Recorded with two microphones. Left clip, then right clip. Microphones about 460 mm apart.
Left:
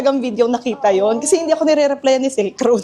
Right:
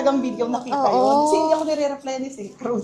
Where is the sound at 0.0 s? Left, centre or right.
Left.